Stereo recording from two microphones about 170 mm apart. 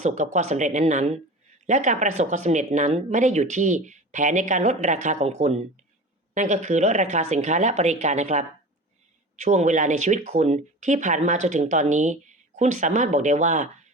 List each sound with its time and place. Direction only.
0.0 s speech: 45° right (ahead or behind)